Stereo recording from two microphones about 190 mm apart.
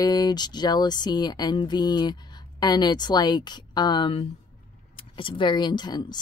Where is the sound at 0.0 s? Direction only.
20° left (ahead or behind).